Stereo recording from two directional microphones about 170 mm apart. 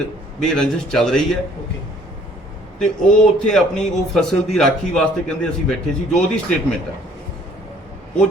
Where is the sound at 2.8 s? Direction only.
5° left (ahead or behind).